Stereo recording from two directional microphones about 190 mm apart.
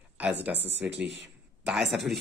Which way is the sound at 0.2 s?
10° right (ahead or behind).